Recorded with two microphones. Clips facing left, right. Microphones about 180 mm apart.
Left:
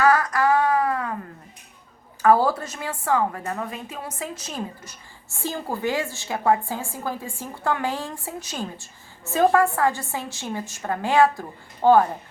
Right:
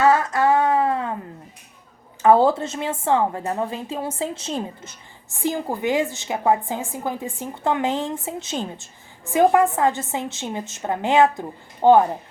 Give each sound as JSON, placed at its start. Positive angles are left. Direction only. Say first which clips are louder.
{"t": 0.0, "sound": "female singing", "louder": "right 2 dB", "side_deg": -25}
{"t": 2.2, "sound": "a woman's voice", "louder": "right 3 dB", "side_deg": -25}